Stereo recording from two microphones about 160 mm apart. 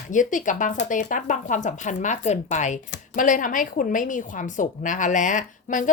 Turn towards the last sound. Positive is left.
turn(degrees=55)  # may be behind; listen again after turning